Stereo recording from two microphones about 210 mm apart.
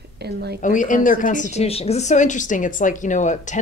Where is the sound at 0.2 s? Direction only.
50° right (ahead or behind).